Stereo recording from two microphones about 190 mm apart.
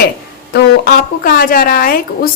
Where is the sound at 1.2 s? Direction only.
50° left (ahead or behind).